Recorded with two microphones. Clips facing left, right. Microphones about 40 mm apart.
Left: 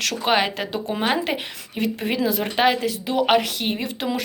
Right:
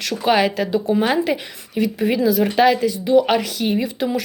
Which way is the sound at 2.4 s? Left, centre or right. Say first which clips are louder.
Right 4 dB; left.